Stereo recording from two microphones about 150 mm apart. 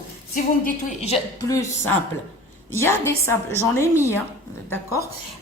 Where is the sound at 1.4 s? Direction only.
20° left (ahead or behind).